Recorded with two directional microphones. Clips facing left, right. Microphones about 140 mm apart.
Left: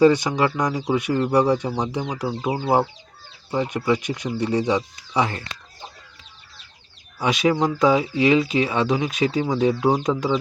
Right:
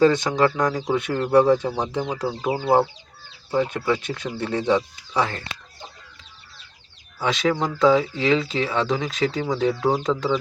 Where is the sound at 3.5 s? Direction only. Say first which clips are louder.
Even; 15° left (ahead or behind).